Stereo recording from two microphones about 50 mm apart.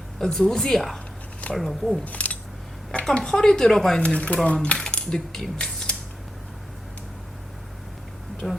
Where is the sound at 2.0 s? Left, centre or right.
Left.